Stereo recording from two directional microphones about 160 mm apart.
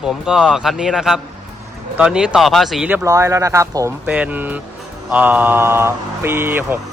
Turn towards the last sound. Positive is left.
turn(degrees=-15)  # may be behind; listen again after turning